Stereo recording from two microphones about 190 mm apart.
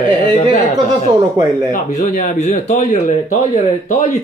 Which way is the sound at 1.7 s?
35° left (ahead or behind).